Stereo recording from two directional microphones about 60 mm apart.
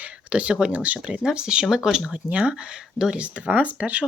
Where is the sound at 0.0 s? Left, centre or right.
Right.